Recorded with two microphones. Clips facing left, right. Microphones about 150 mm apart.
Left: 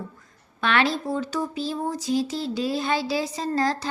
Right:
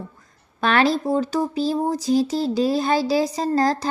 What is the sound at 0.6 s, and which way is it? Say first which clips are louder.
A child's voice: right 4 dB; 40° right (ahead or behind).